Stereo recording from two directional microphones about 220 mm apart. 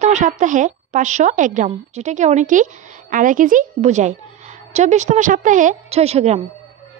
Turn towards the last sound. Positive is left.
turn(degrees=-30)  # may be behind; listen again after turning